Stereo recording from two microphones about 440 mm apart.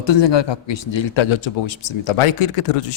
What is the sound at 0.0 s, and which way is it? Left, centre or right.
A man's voice, left.